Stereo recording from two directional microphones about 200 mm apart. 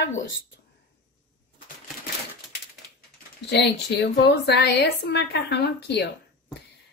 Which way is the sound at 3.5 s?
55° left (ahead or behind).